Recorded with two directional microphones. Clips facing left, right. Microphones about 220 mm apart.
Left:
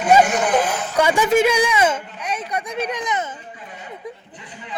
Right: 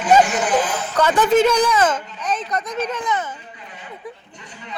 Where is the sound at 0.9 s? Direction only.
10° left (ahead or behind).